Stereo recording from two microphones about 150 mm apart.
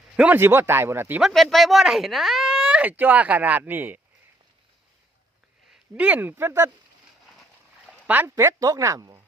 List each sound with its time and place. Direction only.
0.2 s speech: 10° right (ahead or behind)
1.3 s speech: centre (ahead or behind)
6.0 s speech: 10° right (ahead or behind)
8.0 s speech: 10° right (ahead or behind)